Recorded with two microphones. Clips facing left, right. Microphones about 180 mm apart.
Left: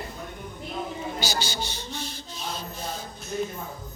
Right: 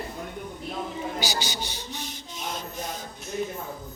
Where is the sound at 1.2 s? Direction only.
15° right (ahead or behind).